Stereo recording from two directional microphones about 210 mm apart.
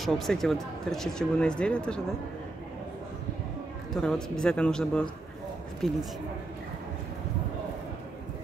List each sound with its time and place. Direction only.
0.0 s speech: centre (ahead or behind)
3.9 s speech: 5° left (ahead or behind)